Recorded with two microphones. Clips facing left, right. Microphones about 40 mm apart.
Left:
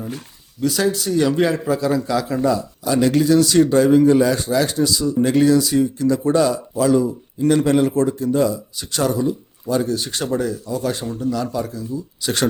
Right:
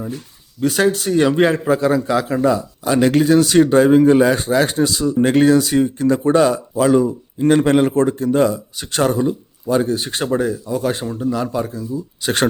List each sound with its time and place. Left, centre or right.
0.6 s speech: right